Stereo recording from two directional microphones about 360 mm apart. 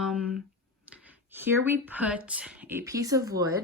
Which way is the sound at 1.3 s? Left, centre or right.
Centre.